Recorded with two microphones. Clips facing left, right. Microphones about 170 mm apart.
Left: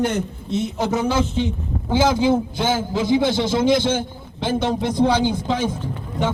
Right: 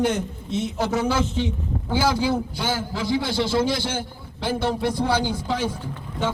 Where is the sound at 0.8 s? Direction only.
20° left (ahead or behind).